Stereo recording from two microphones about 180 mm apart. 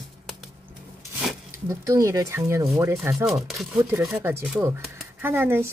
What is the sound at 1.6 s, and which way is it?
Speech, 15° right (ahead or behind).